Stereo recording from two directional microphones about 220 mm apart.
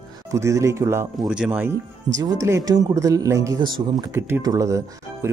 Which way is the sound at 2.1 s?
15° right (ahead or behind).